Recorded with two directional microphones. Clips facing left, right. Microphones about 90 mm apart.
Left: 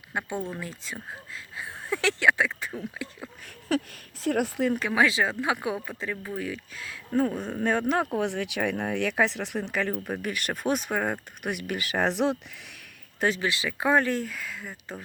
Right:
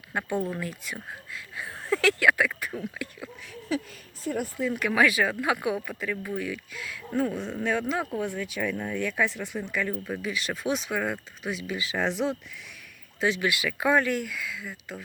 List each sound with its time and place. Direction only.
0.1 s speech: 20° left (ahead or behind)
3.7 s speech: 60° left (ahead or behind)
4.2 s speech: 80° left
4.9 s speech: 25° left (ahead or behind)
7.6 s speech: 50° left (ahead or behind); by 9.9 s 65° left (ahead or behind)
10.1 s speech: 55° left (ahead or behind); by 11.2 s 40° left (ahead or behind)
11.4 s speech: 60° left (ahead or behind)
13.1 s speech: 45° left (ahead or behind)
13.4 s speech: 30° left (ahead or behind)